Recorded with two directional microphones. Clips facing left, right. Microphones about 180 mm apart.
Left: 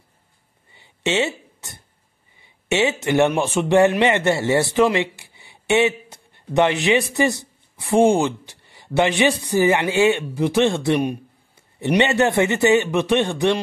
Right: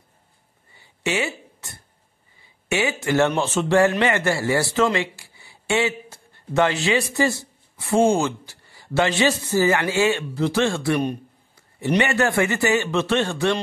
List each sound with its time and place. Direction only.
0.7 s a sound: 20° left (ahead or behind)
2.7 s speech: 25° left (ahead or behind)
12.0 s speech: 20° left (ahead or behind)